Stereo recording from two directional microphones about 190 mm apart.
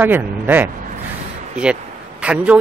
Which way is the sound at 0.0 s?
10° right (ahead or behind).